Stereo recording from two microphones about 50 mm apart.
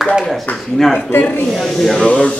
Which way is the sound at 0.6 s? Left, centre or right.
Centre.